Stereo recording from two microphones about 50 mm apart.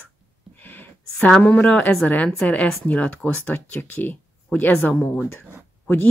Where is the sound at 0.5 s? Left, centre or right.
Left.